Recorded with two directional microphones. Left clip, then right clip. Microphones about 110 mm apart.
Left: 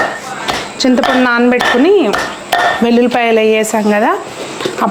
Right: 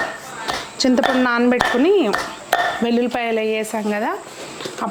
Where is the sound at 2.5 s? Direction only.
10° right (ahead or behind).